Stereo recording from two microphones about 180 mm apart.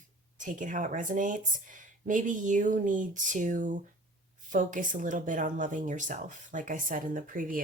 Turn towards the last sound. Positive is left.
turn(degrees=-50)  # may be behind; listen again after turning